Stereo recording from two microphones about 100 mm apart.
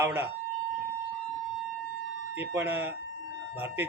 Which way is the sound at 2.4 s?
20° right (ahead or behind).